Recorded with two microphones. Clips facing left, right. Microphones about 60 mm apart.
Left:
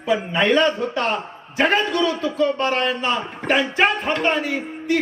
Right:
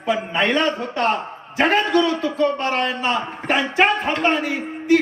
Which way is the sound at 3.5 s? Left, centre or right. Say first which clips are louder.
Even; centre.